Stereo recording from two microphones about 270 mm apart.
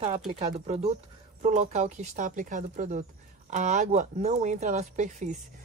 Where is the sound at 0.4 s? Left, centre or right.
Right.